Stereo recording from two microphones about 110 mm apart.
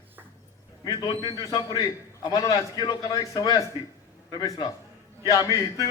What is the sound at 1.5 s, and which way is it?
A man's voice, 35° left (ahead or behind).